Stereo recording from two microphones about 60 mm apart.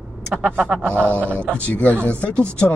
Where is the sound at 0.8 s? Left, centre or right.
Right.